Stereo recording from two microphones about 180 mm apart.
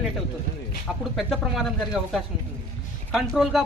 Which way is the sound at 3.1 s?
Centre (ahead or behind).